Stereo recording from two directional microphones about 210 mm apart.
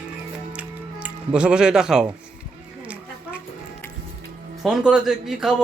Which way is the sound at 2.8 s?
5° right (ahead or behind).